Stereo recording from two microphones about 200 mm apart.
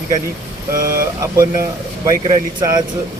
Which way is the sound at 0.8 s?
45° right (ahead or behind).